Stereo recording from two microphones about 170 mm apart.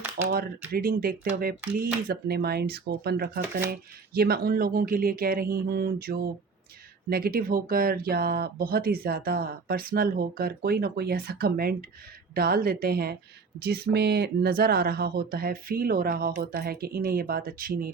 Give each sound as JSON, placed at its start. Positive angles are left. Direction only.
{"t": 0.2, "sound": "speech", "side_deg": -10}
{"t": 0.7, "sound": "speech", "side_deg": -60}